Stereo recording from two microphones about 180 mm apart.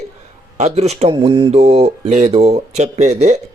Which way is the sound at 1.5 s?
40° right (ahead or behind).